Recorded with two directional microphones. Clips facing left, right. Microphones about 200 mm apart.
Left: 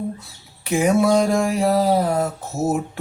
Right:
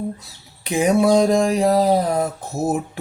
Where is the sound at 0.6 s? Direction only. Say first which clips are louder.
Right 1 dB; 20° right (ahead or behind).